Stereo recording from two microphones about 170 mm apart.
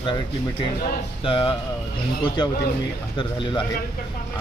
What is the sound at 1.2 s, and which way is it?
Speech, 30° left (ahead or behind).